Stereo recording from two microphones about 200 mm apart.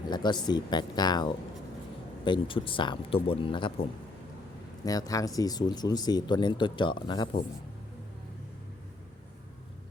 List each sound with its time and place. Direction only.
0.1 s speech: 20° left (ahead or behind)
4.9 s speech: 15° left (ahead or behind)